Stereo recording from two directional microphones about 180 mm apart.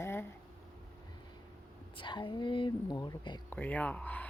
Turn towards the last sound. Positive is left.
turn(degrees=10)  # may be behind; listen again after turning